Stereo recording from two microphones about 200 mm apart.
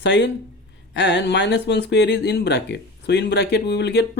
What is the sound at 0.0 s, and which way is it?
Speech, 60° left (ahead or behind).